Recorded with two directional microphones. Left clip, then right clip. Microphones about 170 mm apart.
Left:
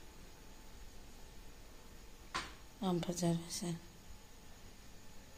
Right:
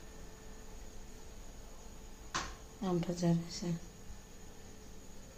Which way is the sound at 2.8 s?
60° left (ahead or behind).